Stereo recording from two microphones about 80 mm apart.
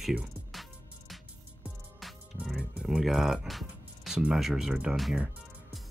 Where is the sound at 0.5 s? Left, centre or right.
Centre.